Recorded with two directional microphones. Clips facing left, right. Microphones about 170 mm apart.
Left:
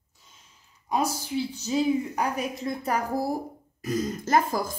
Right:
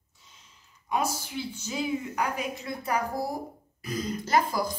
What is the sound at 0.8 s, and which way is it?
A woman's voice, 35° left (ahead or behind).